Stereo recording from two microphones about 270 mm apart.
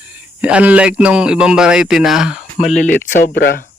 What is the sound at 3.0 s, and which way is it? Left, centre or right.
Speech, left.